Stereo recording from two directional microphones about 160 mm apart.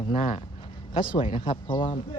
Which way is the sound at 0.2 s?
45° left (ahead or behind).